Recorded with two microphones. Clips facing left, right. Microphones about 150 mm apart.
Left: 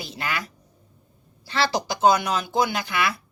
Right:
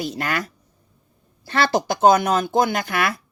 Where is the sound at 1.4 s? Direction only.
50° right (ahead or behind).